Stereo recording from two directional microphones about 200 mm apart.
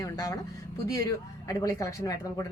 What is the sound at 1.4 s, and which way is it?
Speech, 20° left (ahead or behind).